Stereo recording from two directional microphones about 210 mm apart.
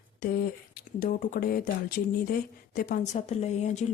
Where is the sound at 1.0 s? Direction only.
40° left (ahead or behind).